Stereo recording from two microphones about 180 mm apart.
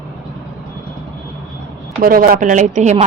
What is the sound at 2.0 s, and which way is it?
Speech, 50° right (ahead or behind).